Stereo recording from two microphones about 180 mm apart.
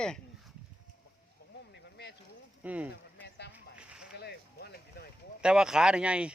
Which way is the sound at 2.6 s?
10° right (ahead or behind).